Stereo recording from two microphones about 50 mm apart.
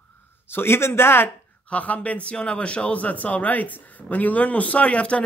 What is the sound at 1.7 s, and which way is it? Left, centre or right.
A man's voice, left.